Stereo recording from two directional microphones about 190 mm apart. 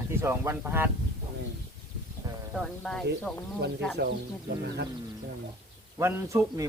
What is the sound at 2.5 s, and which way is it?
Speech, centre (ahead or behind).